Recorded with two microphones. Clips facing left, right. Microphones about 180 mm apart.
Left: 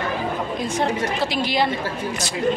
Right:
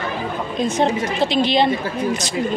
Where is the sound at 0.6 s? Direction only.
20° right (ahead or behind).